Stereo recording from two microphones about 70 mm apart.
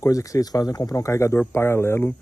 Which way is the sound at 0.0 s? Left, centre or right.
Left.